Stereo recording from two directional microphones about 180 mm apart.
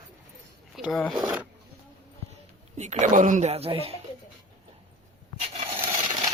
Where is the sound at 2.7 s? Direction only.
40° right (ahead or behind).